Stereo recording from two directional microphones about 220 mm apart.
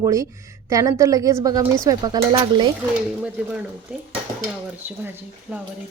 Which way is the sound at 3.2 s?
5° right (ahead or behind).